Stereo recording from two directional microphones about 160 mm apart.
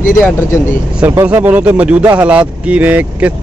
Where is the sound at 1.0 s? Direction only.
15° right (ahead or behind).